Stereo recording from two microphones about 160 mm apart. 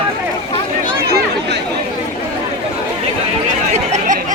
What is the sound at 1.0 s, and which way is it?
Chatter, 80° right.